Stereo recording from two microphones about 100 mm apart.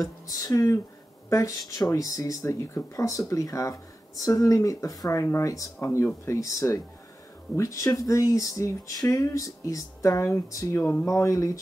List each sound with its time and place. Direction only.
0.3 s speech: 35° left (ahead or behind)